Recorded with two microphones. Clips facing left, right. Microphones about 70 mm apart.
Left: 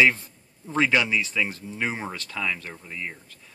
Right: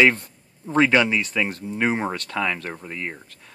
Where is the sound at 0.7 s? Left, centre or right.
Right.